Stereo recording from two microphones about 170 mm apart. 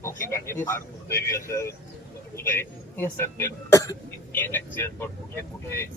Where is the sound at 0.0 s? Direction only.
15° left (ahead or behind).